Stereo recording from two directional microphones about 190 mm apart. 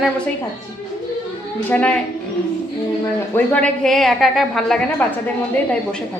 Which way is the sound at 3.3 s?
5° left (ahead or behind).